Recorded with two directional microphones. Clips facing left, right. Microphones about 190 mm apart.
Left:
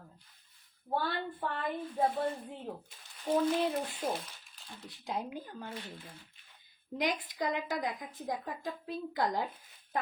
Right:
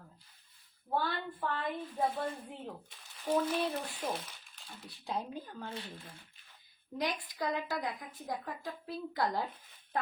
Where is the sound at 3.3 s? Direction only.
25° left (ahead or behind).